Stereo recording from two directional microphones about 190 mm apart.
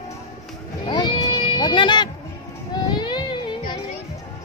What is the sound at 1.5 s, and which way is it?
Speech, 25° left (ahead or behind).